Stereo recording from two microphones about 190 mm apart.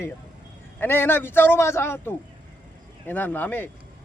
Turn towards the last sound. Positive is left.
turn(degrees=10)  # may be behind; listen again after turning